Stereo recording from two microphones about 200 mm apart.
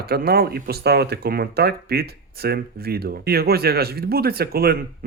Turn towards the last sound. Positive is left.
turn(degrees=-50)  # may be behind; listen again after turning